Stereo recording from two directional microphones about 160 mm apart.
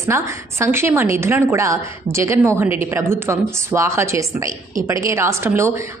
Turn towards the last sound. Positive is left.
turn(degrees=-15)  # may be behind; listen again after turning